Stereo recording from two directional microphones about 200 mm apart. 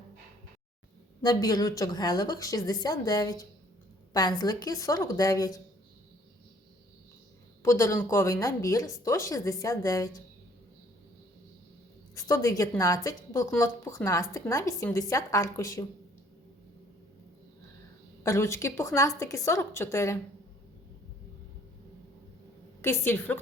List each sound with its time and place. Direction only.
1.2 s a woman's voice: 20° left (ahead or behind)
7.6 s a woman's voice: 15° left (ahead or behind)
12.1 s a woman's voice: 15° left (ahead or behind)
18.2 s a woman's voice: 15° left (ahead or behind)
22.8 s a woman's voice: 10° left (ahead or behind)